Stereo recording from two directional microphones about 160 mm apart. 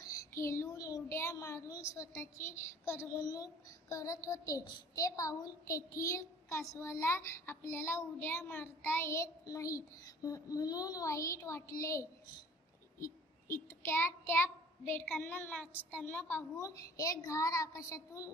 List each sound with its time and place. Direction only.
0.0 s a child's voice: 20° left (ahead or behind)